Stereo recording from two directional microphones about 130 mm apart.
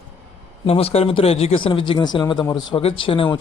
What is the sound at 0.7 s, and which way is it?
Speech, 50° left (ahead or behind).